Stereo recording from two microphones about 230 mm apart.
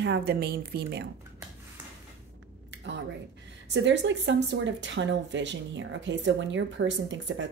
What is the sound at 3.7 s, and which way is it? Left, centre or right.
Speech, right.